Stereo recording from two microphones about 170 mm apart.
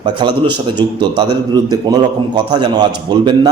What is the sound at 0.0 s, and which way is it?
A man's voice, 25° right (ahead or behind).